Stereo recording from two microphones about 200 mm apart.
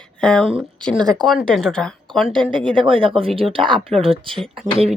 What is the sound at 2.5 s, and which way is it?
Speech, 25° right (ahead or behind).